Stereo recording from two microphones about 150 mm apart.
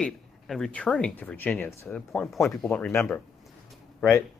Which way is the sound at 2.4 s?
15° left (ahead or behind).